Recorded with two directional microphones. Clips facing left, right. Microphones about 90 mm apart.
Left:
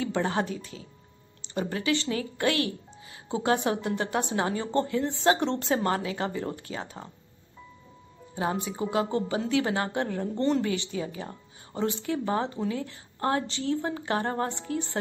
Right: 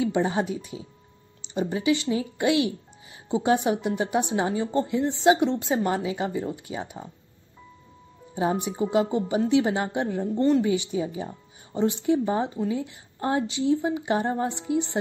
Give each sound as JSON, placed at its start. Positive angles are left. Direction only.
{"t": 0.0, "sound": "a woman's voice", "side_deg": -15}
{"t": 8.4, "sound": "a woman's voice", "side_deg": -20}